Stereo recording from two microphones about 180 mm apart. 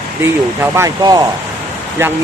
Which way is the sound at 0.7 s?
20° right (ahead or behind).